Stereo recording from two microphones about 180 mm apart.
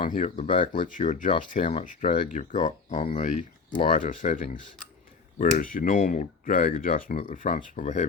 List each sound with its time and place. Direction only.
0.0 s speech: 45° left (ahead or behind)